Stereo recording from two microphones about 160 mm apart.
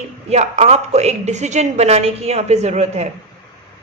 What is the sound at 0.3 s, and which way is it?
A woman's voice, 45° right (ahead or behind).